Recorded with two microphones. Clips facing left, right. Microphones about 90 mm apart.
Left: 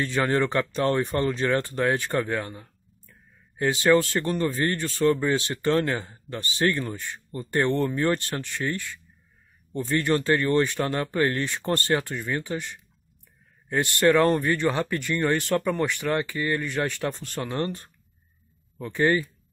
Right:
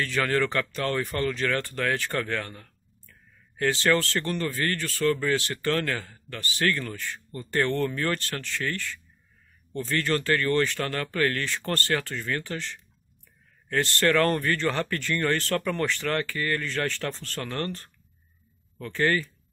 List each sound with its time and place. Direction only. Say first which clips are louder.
0.0 s speech: left 2 dB; 20° left (ahead or behind)